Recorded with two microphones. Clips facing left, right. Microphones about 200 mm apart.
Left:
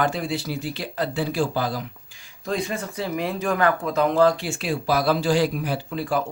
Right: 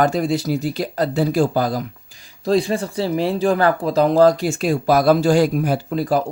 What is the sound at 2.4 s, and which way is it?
Speech, 35° right (ahead or behind).